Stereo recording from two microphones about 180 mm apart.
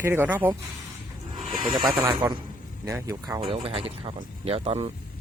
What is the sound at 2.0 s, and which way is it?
Speech, 25° right (ahead or behind).